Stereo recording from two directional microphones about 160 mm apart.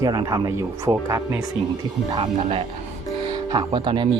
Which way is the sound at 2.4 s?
40° right (ahead or behind).